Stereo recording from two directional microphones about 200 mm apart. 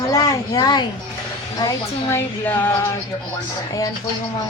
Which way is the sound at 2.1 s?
10° left (ahead or behind).